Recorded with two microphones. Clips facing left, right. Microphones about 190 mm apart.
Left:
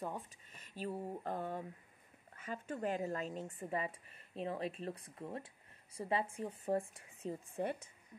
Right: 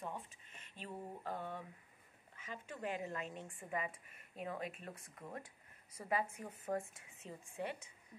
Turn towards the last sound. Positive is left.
turn(degrees=40)  # may be behind; listen again after turning